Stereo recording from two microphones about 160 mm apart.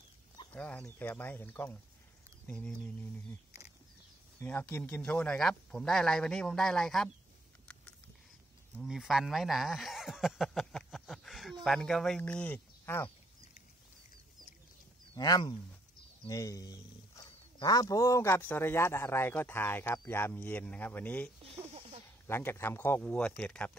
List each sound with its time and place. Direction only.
0.5 s a man's voice: 10° left (ahead or behind)
4.4 s speech: 10° left (ahead or behind)
8.7 s speech: 5° right (ahead or behind); by 13.1 s 15° left (ahead or behind)
15.1 s a man's voice: 25° left (ahead or behind); by 23.8 s 10° left (ahead or behind)